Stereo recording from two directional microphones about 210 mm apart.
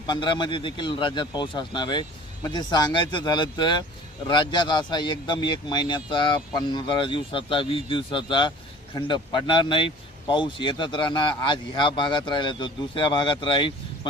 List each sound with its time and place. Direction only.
0.1 s speech: 20° left (ahead or behind)